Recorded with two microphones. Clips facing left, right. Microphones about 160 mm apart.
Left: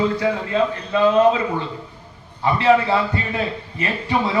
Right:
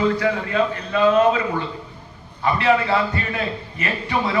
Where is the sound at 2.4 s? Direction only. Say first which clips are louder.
Left 2 dB; 20° left (ahead or behind).